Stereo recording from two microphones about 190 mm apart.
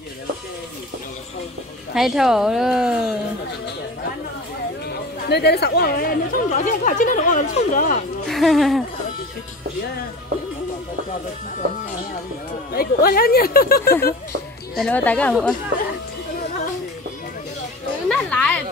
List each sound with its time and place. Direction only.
2.0 s speech: centre (ahead or behind)
4.8 s speech: 60° left (ahead or behind); by 8.0 s 45° left (ahead or behind)
8.3 s speech: centre (ahead or behind)
12.7 s speech: 50° left (ahead or behind)
14.8 s speech: 5° left (ahead or behind)
18.0 s a sound: 5° left (ahead or behind)